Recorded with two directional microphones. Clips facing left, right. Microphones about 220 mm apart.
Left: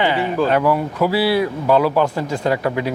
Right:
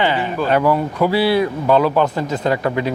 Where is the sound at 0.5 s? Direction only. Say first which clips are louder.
Right 1 dB; centre (ahead or behind).